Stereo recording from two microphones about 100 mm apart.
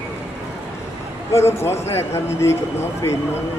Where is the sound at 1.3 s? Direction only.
25° left (ahead or behind).